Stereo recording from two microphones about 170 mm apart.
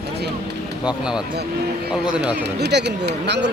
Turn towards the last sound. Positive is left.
turn(degrees=-90)